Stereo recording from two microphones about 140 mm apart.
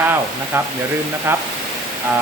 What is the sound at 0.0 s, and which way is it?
Speech, 15° right (ahead or behind).